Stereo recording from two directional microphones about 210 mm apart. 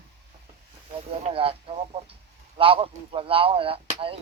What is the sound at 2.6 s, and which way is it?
Speech, 25° right (ahead or behind).